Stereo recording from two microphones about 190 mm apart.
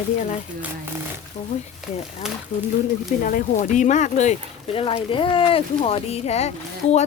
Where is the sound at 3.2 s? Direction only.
45° left (ahead or behind).